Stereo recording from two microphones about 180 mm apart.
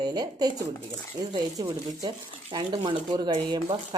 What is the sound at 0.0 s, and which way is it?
A woman's voice, 20° right (ahead or behind).